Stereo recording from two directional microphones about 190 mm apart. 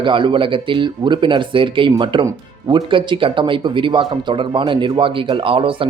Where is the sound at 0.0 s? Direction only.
25° right (ahead or behind).